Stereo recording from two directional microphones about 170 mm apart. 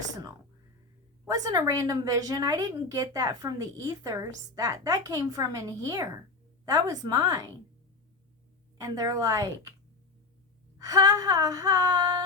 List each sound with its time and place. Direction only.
1.3 s a woman's voice: 20° right (ahead or behind)
8.8 s a woman's voice: 20° right (ahead or behind)
10.8 s a woman's voice: 20° right (ahead or behind)